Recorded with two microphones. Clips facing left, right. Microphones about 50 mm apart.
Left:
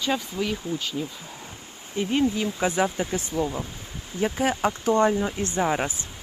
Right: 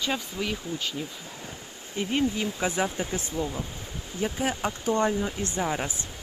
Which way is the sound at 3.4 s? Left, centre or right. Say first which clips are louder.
Left 4 dB; left.